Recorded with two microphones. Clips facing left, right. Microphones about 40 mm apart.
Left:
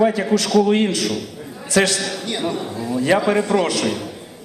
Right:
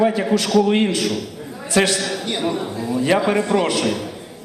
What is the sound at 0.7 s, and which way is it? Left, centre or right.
Speech, right.